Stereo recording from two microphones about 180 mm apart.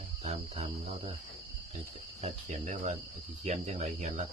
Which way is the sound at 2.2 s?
40° right (ahead or behind).